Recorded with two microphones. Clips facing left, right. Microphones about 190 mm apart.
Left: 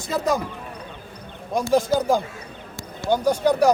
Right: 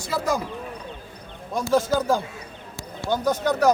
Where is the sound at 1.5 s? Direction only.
15° left (ahead or behind).